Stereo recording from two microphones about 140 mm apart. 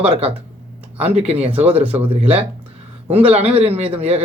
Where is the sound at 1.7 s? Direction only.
10° right (ahead or behind).